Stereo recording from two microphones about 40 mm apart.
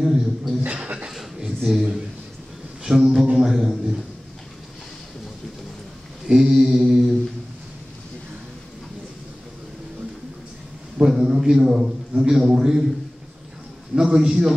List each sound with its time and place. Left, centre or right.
0.0 s chuckle: centre
0.8 s a sound: right
1.6 s a man's voice: centre
2.8 s a sound: centre
3.3 s music: centre
6.2 s mantra: centre
11.0 s a sound: centre
12.2 s a man's voice: centre
13.9 s a man's voice: centre